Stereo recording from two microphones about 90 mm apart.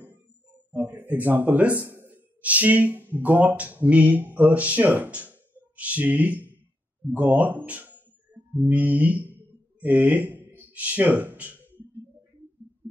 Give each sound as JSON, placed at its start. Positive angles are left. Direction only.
{"t": 0.7, "sound": "speech", "side_deg": -20}
{"t": 8.6, "sound": "music", "side_deg": -20}
{"t": 9.8, "sound": "speech", "side_deg": -15}
{"t": 10.6, "sound": "a sound", "side_deg": -15}